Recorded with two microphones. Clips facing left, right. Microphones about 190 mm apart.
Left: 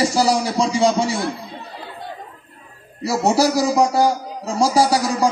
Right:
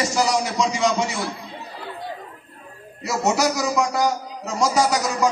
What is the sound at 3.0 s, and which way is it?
A man's voice, 35° left (ahead or behind).